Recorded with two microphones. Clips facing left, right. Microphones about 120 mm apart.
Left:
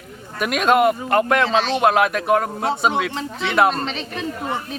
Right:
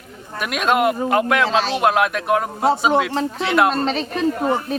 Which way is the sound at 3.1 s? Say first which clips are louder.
Right 6 dB; 40° right (ahead or behind).